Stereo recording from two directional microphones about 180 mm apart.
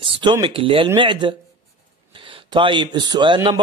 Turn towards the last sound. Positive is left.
turn(degrees=-25)  # may be behind; listen again after turning